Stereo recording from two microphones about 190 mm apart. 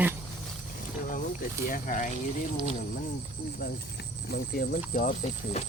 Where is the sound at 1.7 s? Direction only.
45° left (ahead or behind).